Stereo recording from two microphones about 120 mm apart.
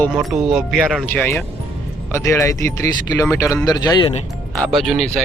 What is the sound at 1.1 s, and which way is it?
Speech, 10° left (ahead or behind).